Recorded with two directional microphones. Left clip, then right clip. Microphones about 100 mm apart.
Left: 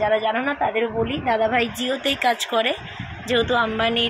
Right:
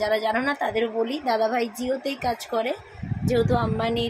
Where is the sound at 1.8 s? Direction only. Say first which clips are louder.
Left 5 dB; 5° left (ahead or behind).